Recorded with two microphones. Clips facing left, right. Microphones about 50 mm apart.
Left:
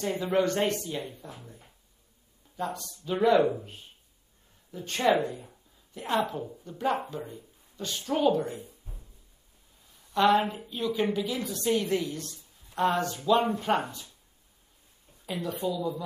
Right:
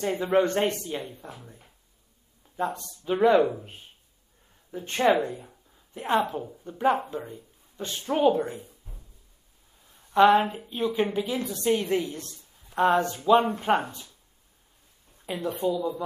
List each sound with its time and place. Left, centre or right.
0.0 s a woman's voice: right
1.4 s speech: centre
2.5 s a woman's voice: right
4.6 s a woman's voice: right
7.7 s a woman's voice: right
8.6 s a sound: centre
10.1 s a woman's voice: centre
15.2 s a woman's voice: centre